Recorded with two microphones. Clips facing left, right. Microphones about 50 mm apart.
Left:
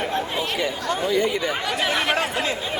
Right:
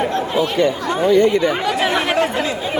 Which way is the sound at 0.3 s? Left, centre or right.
Centre.